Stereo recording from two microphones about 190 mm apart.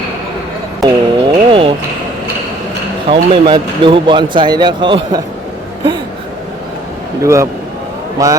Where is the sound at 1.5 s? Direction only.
30° right (ahead or behind).